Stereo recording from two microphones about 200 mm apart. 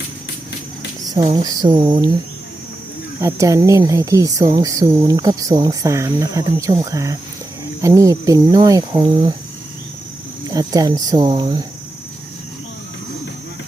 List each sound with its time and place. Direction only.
1.0 s speech: 20° right (ahead or behind)
3.2 s speech: 15° right (ahead or behind)
10.5 s speech: 20° right (ahead or behind)